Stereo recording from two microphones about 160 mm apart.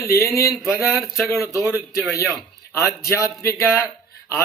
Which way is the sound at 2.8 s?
15° left (ahead or behind).